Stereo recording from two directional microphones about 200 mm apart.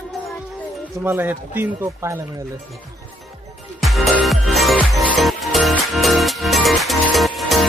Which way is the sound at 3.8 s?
Centre (ahead or behind).